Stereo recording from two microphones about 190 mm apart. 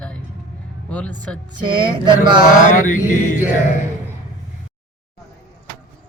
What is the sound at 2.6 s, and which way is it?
Mantra, 40° left (ahead or behind).